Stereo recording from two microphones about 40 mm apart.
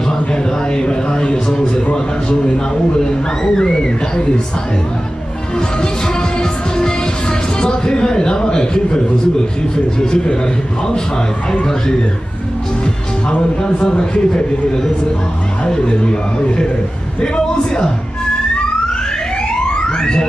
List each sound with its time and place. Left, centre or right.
0.3 s a sound: left
3.5 s speech: centre
7.6 s a man's voice: centre
13.6 s a man's voice: left
15.6 s a man's voice: centre
19.7 s a sound: centre